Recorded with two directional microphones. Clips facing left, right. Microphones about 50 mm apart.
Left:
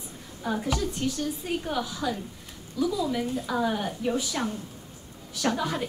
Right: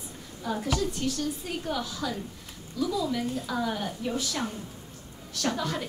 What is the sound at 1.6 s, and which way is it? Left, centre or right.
Speech, centre.